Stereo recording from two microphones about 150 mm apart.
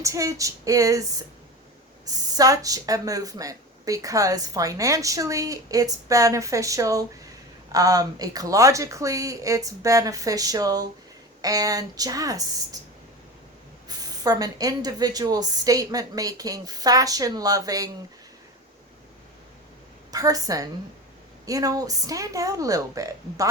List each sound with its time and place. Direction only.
0.0 s speech: 20° right (ahead or behind)
2.0 s speech: 25° right (ahead or behind)
13.8 s speech: 25° right (ahead or behind)
20.1 s speech: 25° right (ahead or behind)